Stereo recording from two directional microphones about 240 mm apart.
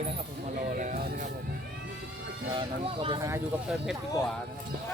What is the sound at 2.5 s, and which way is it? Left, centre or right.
Speech, centre.